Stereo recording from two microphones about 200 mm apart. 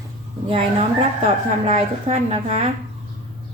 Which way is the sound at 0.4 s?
25° right (ahead or behind).